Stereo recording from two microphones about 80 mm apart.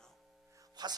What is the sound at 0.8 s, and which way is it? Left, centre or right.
Speech, right.